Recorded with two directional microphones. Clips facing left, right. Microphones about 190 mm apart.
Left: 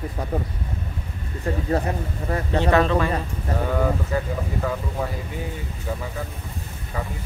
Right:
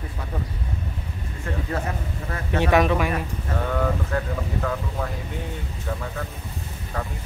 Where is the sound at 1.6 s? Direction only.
35° left (ahead or behind).